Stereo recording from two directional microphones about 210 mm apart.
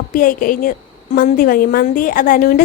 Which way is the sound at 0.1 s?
40° left (ahead or behind).